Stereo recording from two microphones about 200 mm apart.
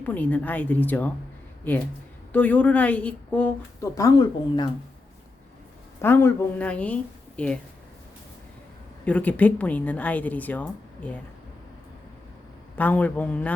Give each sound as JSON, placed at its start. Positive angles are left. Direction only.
{"t": 0.0, "sound": "a woman's voice", "side_deg": 10}
{"t": 6.0, "sound": "a woman's voice", "side_deg": 10}
{"t": 9.0, "sound": "a woman's voice", "side_deg": 5}
{"t": 12.7, "sound": "a woman's voice", "side_deg": 10}